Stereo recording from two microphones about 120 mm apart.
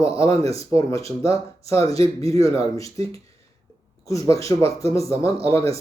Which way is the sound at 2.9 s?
55° right (ahead or behind).